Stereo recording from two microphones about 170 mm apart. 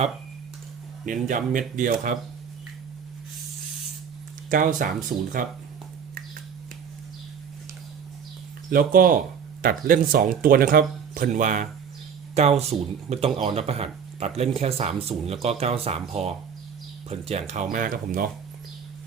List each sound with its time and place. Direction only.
1.0 s speech: 50° right (ahead or behind)
4.4 s speech: 50° right (ahead or behind)
8.7 s speech: 55° right (ahead or behind)